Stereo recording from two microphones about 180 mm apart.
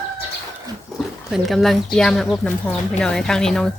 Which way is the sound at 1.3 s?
Centre (ahead or behind).